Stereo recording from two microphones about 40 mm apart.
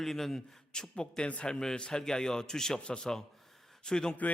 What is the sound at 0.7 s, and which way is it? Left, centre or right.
A man's voice, centre.